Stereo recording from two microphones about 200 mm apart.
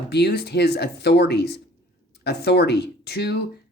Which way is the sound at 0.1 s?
55° left (ahead or behind).